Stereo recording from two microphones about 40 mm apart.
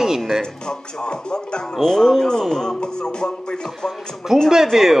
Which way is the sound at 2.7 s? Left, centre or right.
Left.